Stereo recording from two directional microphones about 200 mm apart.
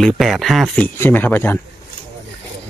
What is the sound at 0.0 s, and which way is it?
Speech, centre (ahead or behind).